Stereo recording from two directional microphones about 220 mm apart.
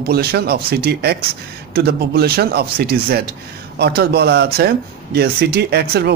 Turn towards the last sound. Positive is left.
turn(degrees=-45)  # may be behind; listen again after turning